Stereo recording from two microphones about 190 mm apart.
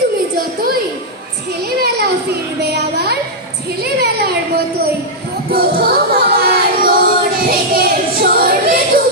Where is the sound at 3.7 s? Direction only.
60° right (ahead or behind).